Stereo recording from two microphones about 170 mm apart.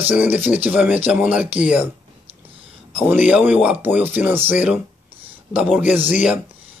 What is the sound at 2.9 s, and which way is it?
Speech, 10° right (ahead or behind).